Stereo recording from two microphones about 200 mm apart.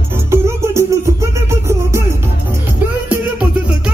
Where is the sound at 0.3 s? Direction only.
15° right (ahead or behind).